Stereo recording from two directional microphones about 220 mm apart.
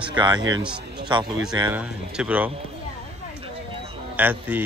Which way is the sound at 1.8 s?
5° right (ahead or behind).